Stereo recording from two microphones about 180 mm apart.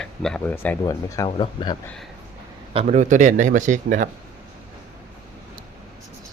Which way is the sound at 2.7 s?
40° right (ahead or behind).